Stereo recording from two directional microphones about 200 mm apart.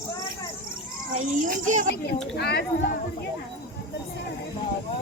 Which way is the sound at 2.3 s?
55° left (ahead or behind).